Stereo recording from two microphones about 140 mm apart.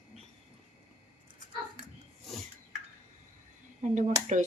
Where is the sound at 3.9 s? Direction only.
60° right (ahead or behind).